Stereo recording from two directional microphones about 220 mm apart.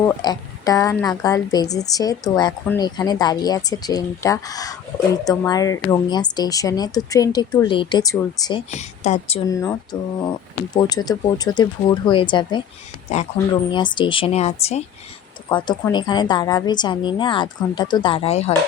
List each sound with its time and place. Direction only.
0.2 s a woman's voice: 15° left (ahead or behind)
8.7 s speech: 30° left (ahead or behind)
9.5 s a woman's voice: 15° left (ahead or behind); by 13.2 s 30° left (ahead or behind)
13.5 s a woman's voice: 20° left (ahead or behind)